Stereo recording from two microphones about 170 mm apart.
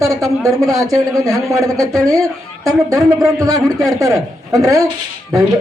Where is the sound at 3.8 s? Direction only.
20° right (ahead or behind).